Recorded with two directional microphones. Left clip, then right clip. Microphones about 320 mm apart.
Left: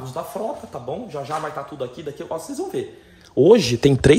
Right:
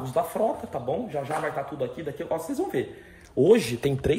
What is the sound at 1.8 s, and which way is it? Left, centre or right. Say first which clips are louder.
Speech: left 1 dB; centre.